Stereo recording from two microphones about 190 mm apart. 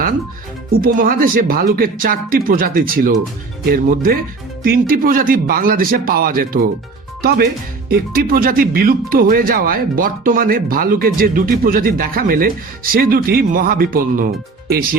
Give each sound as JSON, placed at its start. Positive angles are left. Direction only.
{"t": 0.8, "sound": "speech", "side_deg": -50}